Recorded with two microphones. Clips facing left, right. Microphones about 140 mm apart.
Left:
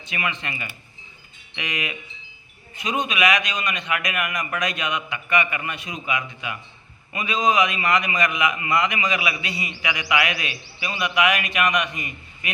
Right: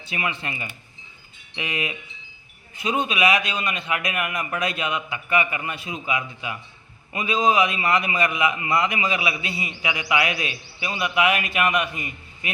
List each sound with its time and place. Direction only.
0.1 s a man's voice: 30° right (ahead or behind)
7.1 s a man's voice: 25° right (ahead or behind)